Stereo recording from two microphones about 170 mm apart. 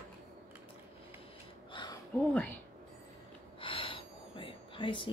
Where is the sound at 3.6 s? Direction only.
30° left (ahead or behind).